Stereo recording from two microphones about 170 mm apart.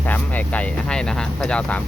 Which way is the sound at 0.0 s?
10° left (ahead or behind).